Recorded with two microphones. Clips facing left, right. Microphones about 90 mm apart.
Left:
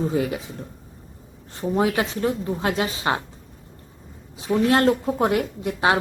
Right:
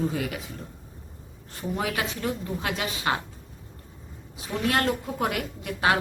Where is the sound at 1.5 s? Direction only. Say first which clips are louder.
Left 8 dB; 30° left (ahead or behind).